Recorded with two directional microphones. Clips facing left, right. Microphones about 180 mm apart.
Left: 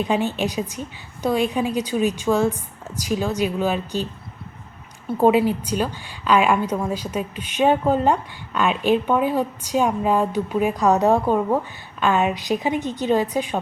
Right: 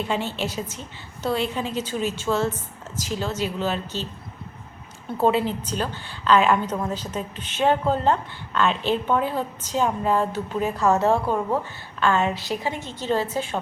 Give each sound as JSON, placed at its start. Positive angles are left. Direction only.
{"t": 0.0, "sound": "a woman's voice", "side_deg": 15}
{"t": 5.1, "sound": "a woman's voice", "side_deg": 15}